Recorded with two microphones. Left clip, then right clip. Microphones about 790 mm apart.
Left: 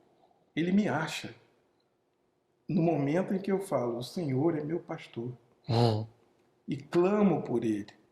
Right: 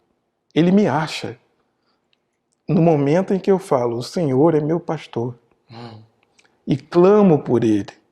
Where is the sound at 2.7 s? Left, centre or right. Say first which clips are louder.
Right 13 dB; right.